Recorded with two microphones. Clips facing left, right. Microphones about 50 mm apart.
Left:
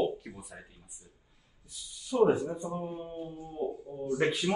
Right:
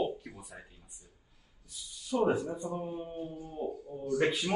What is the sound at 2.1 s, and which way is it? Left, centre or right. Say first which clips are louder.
Speech: left 4 dB; centre.